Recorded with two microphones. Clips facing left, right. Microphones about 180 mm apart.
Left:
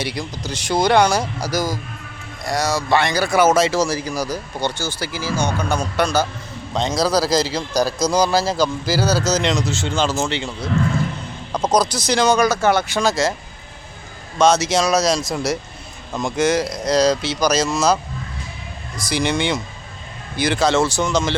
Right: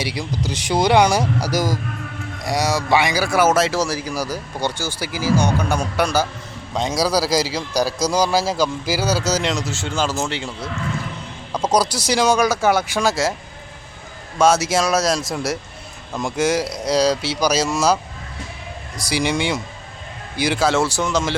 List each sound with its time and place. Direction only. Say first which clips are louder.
0.0 s speech: right 1 dB; 10° right (ahead or behind)
11.7 s speech: even; 10° right (ahead or behind)
14.3 s speech: left 1 dB; 5° right (ahead or behind)